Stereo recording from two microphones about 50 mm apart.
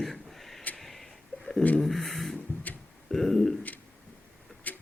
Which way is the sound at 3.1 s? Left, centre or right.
Centre.